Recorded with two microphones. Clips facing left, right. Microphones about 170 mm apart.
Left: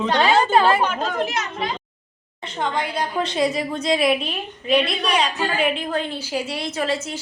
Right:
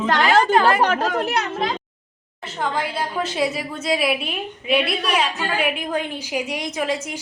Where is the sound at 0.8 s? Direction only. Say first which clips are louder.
Right 3 dB; 75° right (ahead or behind).